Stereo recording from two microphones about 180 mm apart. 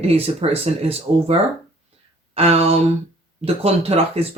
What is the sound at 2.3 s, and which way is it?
Speech, 35° right (ahead or behind).